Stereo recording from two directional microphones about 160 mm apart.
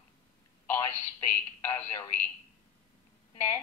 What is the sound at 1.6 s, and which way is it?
Speech, 15° left (ahead or behind).